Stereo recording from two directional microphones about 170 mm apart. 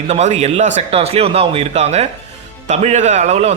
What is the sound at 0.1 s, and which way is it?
A man's voice, 40° right (ahead or behind).